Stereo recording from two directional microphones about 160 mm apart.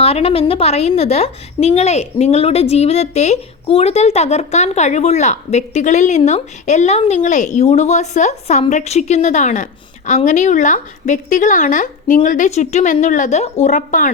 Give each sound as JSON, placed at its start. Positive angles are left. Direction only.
{"t": 0.0, "sound": "a woman's voice", "side_deg": 40}